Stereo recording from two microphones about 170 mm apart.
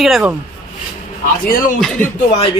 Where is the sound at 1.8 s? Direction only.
5° left (ahead or behind).